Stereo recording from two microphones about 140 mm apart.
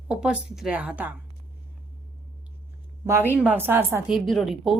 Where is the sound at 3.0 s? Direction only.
20° right (ahead or behind).